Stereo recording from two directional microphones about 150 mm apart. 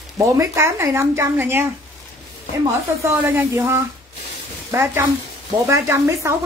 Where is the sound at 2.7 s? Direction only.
20° right (ahead or behind).